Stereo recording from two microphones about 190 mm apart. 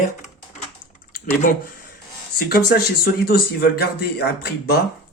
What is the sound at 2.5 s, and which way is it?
Speech, 50° left (ahead or behind).